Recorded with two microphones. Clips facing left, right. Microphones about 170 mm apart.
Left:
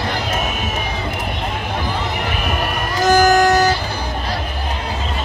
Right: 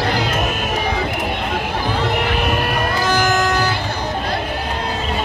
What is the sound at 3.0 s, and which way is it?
Music, 45° left (ahead or behind).